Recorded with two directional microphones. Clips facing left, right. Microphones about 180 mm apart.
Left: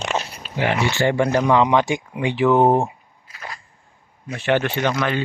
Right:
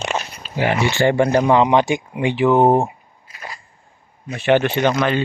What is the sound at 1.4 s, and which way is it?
Speech, 20° right (ahead or behind).